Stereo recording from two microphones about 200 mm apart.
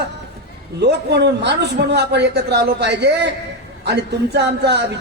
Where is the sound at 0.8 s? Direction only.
60° right (ahead or behind).